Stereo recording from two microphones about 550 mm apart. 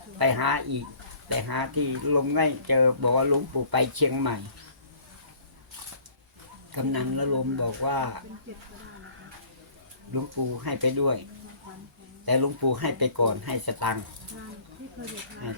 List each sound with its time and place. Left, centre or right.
0.2 s speech: right
6.7 s speech: right
10.1 s speech: right
12.2 s speech: right
15.4 s speech: right